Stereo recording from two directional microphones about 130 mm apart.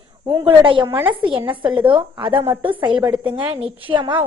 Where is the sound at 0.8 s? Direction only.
15° right (ahead or behind).